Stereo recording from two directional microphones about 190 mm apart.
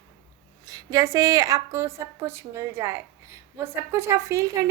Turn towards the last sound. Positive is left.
turn(degrees=-15)  # may be behind; listen again after turning